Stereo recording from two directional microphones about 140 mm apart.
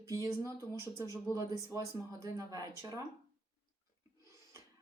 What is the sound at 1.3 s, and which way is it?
Speech, 20° right (ahead or behind).